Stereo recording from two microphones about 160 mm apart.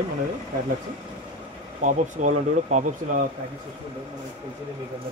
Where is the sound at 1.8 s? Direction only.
50° right (ahead or behind).